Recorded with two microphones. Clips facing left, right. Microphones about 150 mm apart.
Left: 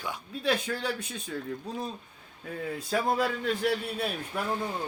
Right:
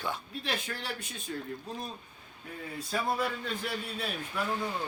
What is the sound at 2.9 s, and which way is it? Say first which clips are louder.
Speech: left 4 dB; 90° left.